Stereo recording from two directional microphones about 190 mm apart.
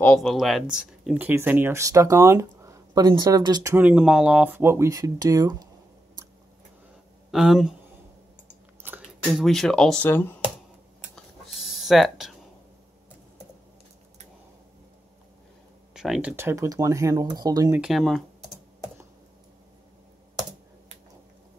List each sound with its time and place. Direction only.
0.0 s speech: 5° left (ahead or behind); by 3.7 s 20° right (ahead or behind)
3.7 s speech: 5° right (ahead or behind)
7.2 s speech: centre (ahead or behind)
8.8 s chewing: 10° right (ahead or behind)
9.4 s speech: centre (ahead or behind)
11.1 s a sound: centre (ahead or behind)
15.9 s speech: 5° right (ahead or behind); by 17.7 s 20° right (ahead or behind)
17.7 s speech: centre (ahead or behind)